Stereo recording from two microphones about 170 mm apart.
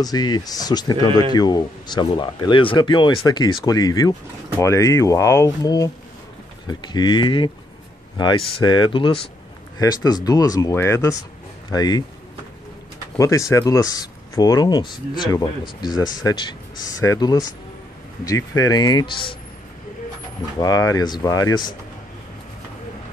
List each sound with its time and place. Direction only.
0.0 s speech: 25° left (ahead or behind)
13.2 s speech: 20° left (ahead or behind)
20.5 s speech: 20° left (ahead or behind)